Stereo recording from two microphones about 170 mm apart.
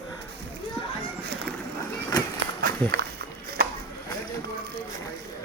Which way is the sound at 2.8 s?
10° left (ahead or behind).